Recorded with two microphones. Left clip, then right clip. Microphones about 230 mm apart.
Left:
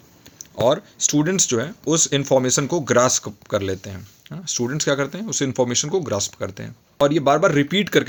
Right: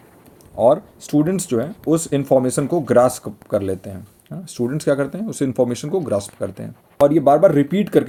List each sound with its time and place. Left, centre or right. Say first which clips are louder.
0.6 s speech: right 3 dB; left